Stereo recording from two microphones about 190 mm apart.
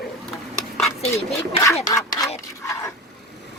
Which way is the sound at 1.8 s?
20° left (ahead or behind).